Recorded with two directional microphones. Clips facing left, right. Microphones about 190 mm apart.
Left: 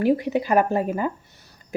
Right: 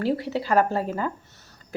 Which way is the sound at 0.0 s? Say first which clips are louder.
Left 5 dB; 15° left (ahead or behind).